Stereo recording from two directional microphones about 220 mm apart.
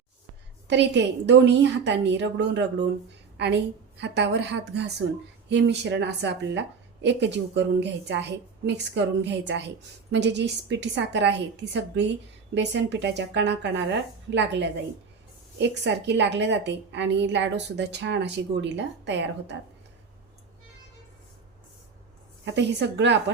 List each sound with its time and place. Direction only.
0.7 s a woman's voice: 50° right (ahead or behind)
22.5 s a woman's voice: 55° right (ahead or behind)